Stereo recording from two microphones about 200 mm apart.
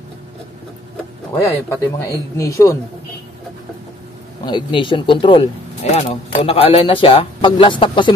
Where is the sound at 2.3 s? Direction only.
15° left (ahead or behind).